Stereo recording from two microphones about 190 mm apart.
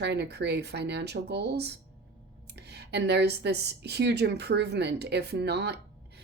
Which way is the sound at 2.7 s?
60° right (ahead or behind).